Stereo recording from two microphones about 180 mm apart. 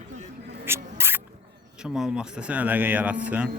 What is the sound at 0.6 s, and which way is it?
Rodents, 15° right (ahead or behind).